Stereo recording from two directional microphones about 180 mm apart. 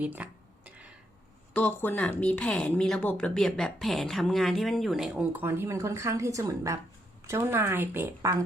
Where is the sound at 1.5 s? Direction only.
10° left (ahead or behind).